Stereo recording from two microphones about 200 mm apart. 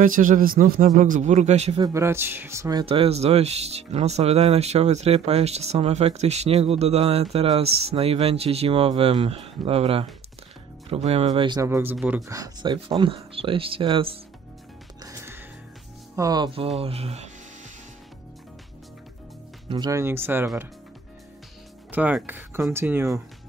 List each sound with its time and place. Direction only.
0.0 s speech: 40° right (ahead or behind)
1.8 s speech: 15° right (ahead or behind)
2.8 s speech: 30° right (ahead or behind)
15.0 s music: 10° right (ahead or behind)
16.2 s speech: 20° right (ahead or behind)
19.7 s speech: 20° right (ahead or behind)
21.9 s speech: 10° right (ahead or behind)